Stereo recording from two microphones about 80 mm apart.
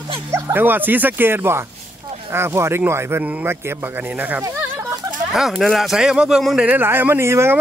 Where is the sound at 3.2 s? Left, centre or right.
Centre.